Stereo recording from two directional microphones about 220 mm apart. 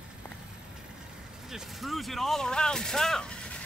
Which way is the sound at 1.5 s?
Centre (ahead or behind).